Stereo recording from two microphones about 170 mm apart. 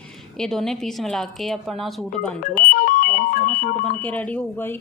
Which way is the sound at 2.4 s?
55° left (ahead or behind).